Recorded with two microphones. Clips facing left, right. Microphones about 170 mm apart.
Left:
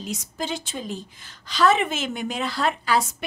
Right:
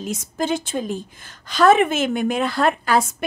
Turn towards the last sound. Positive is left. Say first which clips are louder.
# right 4 dB
turn(degrees=-50)  # may be behind; listen again after turning